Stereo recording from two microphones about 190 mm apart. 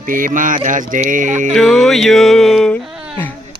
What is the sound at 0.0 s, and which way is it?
Mantra, 45° right (ahead or behind).